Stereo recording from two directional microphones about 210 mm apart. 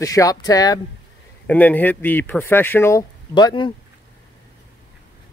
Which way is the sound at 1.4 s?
5° left (ahead or behind).